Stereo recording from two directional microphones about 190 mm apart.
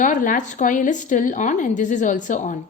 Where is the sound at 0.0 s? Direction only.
45° left (ahead or behind).